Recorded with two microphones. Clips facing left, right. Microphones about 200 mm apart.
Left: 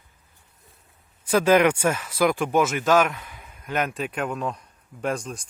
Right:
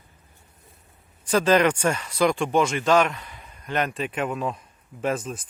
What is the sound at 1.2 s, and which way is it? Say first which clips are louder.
Speech: left 1 dB; 10° left (ahead or behind).